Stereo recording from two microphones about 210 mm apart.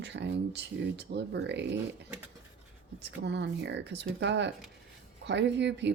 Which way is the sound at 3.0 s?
55° right (ahead or behind).